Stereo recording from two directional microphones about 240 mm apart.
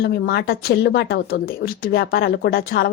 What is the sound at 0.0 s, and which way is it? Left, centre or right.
Speech, left.